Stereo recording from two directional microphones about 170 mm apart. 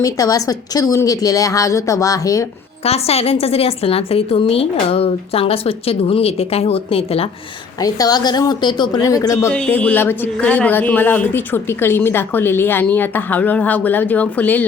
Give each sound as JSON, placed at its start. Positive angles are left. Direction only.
{"t": 0.0, "sound": "a woman's voice", "side_deg": 20}
{"t": 2.8, "sound": "a woman's voice", "side_deg": 35}
{"t": 7.8, "sound": "a woman's voice", "side_deg": 20}
{"t": 9.5, "sound": "speech", "side_deg": 5}